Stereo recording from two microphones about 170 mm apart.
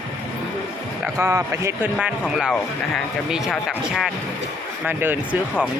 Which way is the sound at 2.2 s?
Centre (ahead or behind).